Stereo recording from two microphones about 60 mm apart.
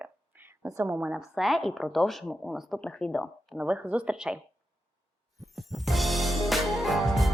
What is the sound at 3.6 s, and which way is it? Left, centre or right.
Speech, right.